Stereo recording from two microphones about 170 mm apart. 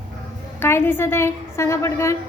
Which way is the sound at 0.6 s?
15° left (ahead or behind).